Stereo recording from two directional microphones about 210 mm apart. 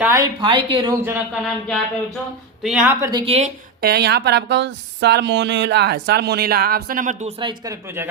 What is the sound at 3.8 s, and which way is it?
Speech, 50° right (ahead or behind).